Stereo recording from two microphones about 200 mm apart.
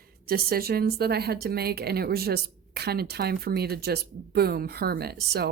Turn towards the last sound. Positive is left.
turn(degrees=-50)  # may be behind; listen again after turning